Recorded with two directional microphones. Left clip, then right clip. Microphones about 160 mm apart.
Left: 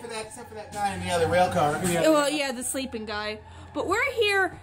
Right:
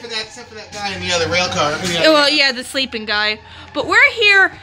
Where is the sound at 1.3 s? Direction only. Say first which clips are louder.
Right 2 dB; 55° left (ahead or behind).